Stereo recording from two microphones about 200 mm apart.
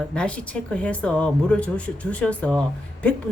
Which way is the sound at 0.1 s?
5° left (ahead or behind).